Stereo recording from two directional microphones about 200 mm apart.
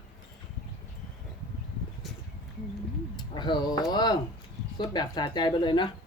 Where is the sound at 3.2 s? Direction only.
20° left (ahead or behind).